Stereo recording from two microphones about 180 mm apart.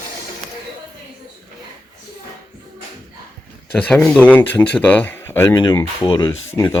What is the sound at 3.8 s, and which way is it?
Speech, 5° left (ahead or behind).